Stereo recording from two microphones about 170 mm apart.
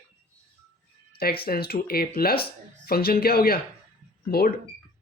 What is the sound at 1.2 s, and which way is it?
Speech, 60° left (ahead or behind).